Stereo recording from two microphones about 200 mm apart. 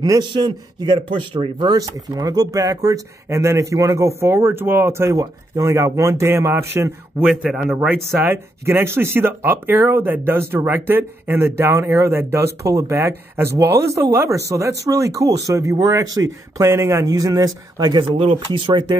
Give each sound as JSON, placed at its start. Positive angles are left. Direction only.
{"t": 0.0, "sound": "a man's voice", "side_deg": -20}